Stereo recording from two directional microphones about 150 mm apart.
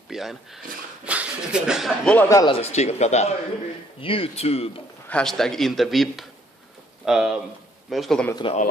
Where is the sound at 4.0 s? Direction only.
35° left (ahead or behind).